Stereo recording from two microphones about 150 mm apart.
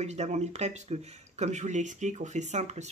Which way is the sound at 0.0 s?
50° right (ahead or behind).